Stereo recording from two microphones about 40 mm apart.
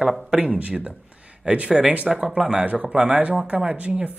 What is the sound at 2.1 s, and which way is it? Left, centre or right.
Speech, centre.